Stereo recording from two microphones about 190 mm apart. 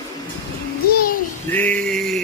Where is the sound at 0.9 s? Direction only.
50° left (ahead or behind).